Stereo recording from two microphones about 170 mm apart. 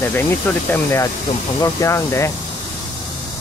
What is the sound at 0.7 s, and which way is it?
Speech, 15° left (ahead or behind).